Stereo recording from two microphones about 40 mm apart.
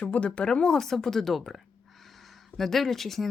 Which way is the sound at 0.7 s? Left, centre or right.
Centre.